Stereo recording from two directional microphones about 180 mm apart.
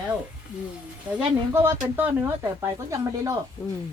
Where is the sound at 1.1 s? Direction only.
15° right (ahead or behind).